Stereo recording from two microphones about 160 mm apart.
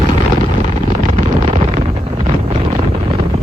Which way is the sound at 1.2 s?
45° right (ahead or behind).